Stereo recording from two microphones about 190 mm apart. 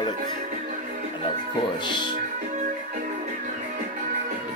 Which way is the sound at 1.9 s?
25° left (ahead or behind).